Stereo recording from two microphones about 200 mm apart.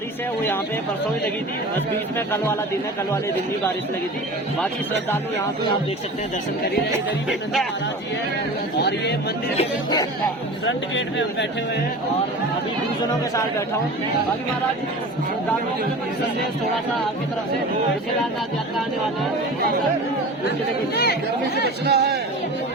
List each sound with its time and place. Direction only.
2.1 s speech: 10° left (ahead or behind)
7.3 s speech: centre (ahead or behind)
8.8 s speech: 60° left (ahead or behind)
10.7 s speech: 65° left (ahead or behind)
20.9 s speech: 55° left (ahead or behind)
21.8 s a sound: 55° right (ahead or behind)